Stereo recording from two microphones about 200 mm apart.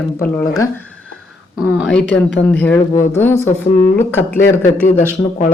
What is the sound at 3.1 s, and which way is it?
Speech, 10° left (ahead or behind).